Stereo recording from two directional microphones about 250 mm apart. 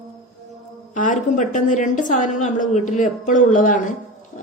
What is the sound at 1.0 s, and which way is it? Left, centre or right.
A woman's voice, left.